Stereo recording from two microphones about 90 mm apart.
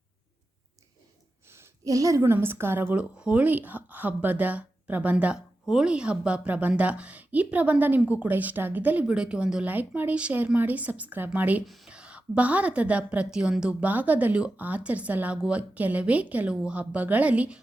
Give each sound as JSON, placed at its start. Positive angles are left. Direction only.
{"t": 1.8, "sound": "a woman's voice", "side_deg": -40}
{"t": 2.2, "sound": "speech", "side_deg": -25}
{"t": 2.9, "sound": "a woman's voice", "side_deg": -10}
{"t": 11.6, "sound": "speech", "side_deg": 0}
{"t": 11.9, "sound": "a woman's voice", "side_deg": -10}